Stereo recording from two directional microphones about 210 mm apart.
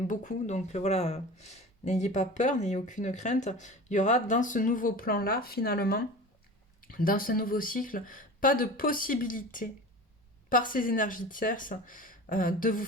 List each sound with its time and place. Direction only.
0.1 s speech: 35° left (ahead or behind)